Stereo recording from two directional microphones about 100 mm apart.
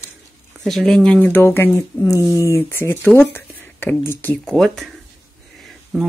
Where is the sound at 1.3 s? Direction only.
20° left (ahead or behind).